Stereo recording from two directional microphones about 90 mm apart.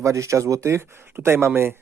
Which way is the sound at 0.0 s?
35° right (ahead or behind).